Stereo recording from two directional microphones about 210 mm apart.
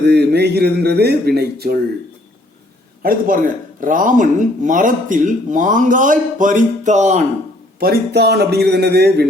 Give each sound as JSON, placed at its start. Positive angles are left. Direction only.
{"t": 0.0, "sound": "speech", "side_deg": -50}
{"t": 3.0, "sound": "speech", "side_deg": -40}
{"t": 7.8, "sound": "speech", "side_deg": -50}